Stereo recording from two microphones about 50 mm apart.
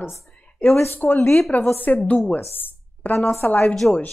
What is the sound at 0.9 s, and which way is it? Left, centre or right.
A woman's voice, left.